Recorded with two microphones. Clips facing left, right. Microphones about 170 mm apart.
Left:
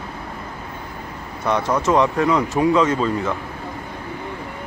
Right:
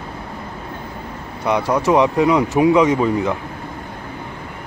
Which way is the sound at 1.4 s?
10° right (ahead or behind).